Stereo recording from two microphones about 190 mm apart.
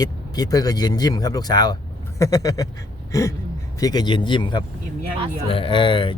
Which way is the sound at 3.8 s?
20° left (ahead or behind).